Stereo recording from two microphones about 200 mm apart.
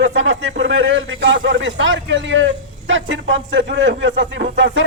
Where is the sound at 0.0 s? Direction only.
65° right (ahead or behind).